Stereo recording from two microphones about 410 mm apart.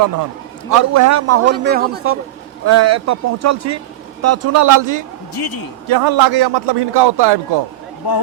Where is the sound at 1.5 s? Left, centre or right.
Right.